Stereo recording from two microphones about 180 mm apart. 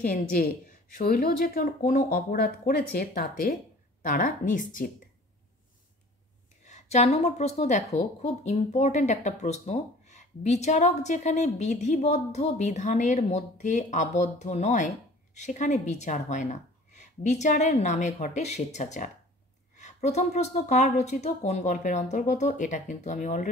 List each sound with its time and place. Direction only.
0.9 s speech: 55° left (ahead or behind)
6.6 s a woman's voice: 40° left (ahead or behind)